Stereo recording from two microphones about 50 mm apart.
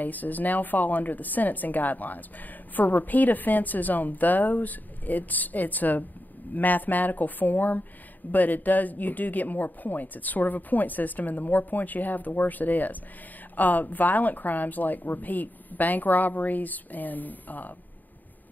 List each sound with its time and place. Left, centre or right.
0.0 s a woman's voice: left